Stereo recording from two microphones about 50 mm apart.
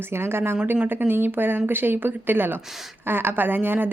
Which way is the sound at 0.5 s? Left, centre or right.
Right.